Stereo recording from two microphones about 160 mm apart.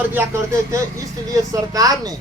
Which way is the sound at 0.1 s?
15° right (ahead or behind).